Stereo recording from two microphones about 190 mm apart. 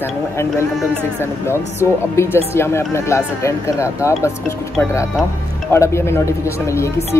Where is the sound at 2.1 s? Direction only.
15° left (ahead or behind).